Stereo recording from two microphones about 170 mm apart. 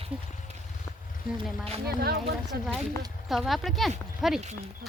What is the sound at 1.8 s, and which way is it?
Speech, 70° right (ahead or behind).